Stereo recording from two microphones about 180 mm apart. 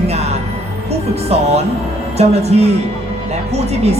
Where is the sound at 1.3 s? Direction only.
35° right (ahead or behind).